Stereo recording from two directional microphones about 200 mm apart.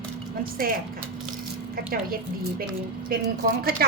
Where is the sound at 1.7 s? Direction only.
45° right (ahead or behind).